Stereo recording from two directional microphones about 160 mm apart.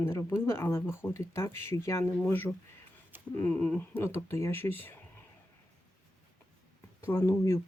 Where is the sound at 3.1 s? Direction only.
10° right (ahead or behind).